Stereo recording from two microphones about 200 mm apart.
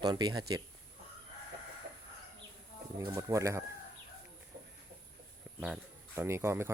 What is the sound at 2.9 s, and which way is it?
Speech, 15° right (ahead or behind).